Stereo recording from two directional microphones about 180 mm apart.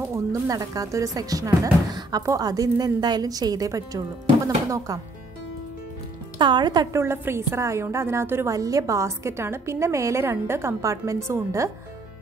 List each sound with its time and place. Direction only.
0.1 s speech: 20° right (ahead or behind)
6.3 s a woman's voice: 25° right (ahead or behind)